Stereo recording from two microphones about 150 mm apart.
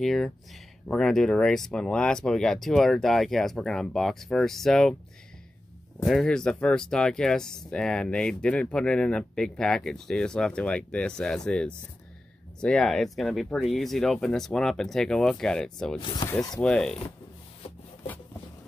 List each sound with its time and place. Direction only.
0.0 s speech: centre (ahead or behind)
6.0 s speech: centre (ahead or behind)
16.0 s speech: 30° left (ahead or behind)
16.5 s speech: 5° left (ahead or behind)